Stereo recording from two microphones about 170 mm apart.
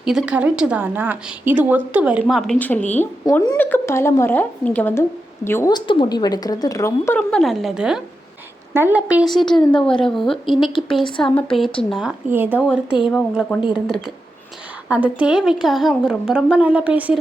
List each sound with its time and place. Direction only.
0.0 s a woman's voice: 5° right (ahead or behind)
3.2 s a woman's voice: 20° left (ahead or behind)
5.7 s a woman's voice: 25° left (ahead or behind)
7.2 s a woman's voice: 5° left (ahead or behind)